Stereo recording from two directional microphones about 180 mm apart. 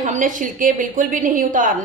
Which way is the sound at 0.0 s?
45° right (ahead or behind).